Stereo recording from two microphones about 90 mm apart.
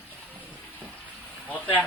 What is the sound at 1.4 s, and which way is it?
Dishes, 15° left (ahead or behind).